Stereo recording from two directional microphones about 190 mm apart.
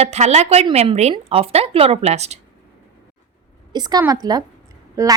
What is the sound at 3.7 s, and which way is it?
A woman's voice, 20° right (ahead or behind).